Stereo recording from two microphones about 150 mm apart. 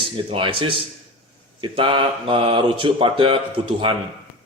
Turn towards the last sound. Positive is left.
turn(degrees=-35)  # may be behind; listen again after turning